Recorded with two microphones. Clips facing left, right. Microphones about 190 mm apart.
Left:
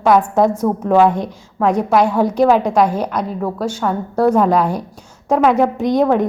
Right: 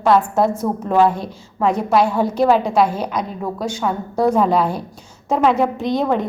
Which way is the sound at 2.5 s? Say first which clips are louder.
Left 2 dB; 15° left (ahead or behind).